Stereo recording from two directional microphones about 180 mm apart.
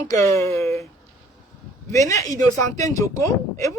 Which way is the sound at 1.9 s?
20° left (ahead or behind).